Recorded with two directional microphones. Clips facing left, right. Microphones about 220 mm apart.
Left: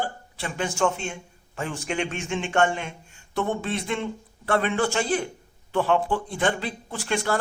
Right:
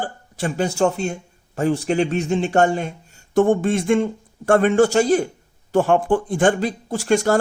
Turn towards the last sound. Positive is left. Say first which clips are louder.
# right 8 dB
turn(degrees=-45)  # may be behind; listen again after turning